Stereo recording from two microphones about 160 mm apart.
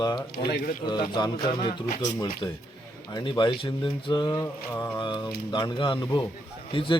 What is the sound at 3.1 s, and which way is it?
Speech, 30° left (ahead or behind).